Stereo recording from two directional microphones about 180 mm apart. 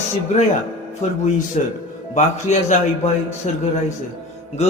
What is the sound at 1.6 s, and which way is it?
A man's voice, 40° left (ahead or behind).